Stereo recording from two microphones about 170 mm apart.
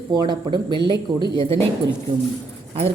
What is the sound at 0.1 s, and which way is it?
Speech, 25° right (ahead or behind).